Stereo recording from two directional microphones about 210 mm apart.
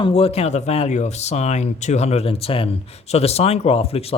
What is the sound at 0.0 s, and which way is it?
Speech, 25° left (ahead or behind).